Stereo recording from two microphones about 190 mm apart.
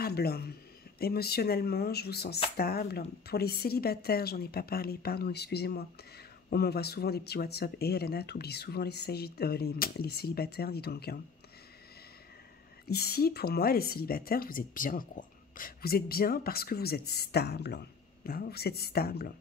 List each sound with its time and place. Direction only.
0.0 s speech: 55° left (ahead or behind)
12.8 s speech: 55° left (ahead or behind)